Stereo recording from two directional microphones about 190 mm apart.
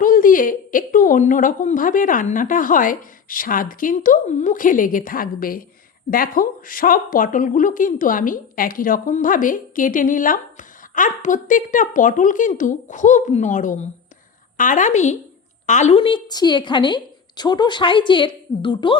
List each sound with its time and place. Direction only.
0.0 s a woman's voice: 45° left (ahead or behind); by 18.9 s 25° left (ahead or behind)